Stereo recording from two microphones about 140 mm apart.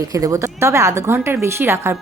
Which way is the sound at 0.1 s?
25° right (ahead or behind).